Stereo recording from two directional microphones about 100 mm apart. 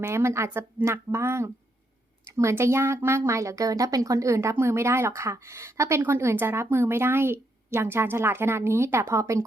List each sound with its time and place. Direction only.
0.0 s speech: 25° right (ahead or behind)